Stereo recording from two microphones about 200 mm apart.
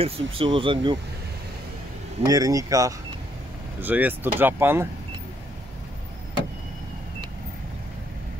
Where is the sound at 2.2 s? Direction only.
15° right (ahead or behind).